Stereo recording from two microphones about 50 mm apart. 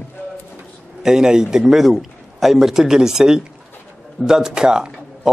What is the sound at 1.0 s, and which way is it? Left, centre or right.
Speech, centre.